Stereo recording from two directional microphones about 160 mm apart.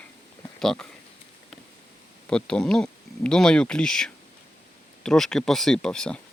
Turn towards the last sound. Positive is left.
turn(degrees=5)  # may be behind; listen again after turning